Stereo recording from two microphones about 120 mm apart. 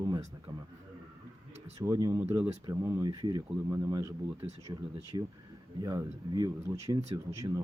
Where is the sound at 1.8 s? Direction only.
30° right (ahead or behind).